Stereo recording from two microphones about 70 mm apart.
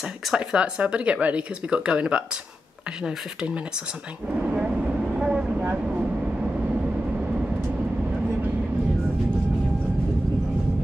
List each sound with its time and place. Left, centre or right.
0.3 s speech: centre
4.3 s vehicle: centre